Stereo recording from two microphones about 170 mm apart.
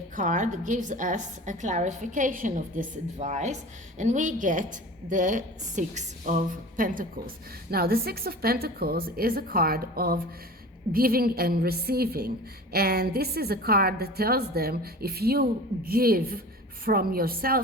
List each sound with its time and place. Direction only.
0.2 s a woman's voice: 50° right (ahead or behind)